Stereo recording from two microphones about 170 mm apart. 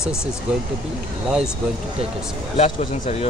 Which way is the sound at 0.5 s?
5° right (ahead or behind).